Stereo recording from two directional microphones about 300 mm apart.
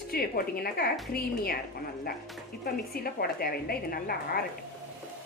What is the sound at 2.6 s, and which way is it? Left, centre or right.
A woman's voice, left.